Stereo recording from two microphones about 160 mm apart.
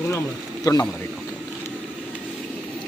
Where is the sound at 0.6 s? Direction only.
25° left (ahead or behind).